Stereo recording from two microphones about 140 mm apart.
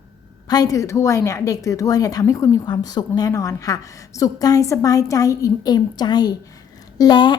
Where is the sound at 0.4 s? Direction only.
25° left (ahead or behind).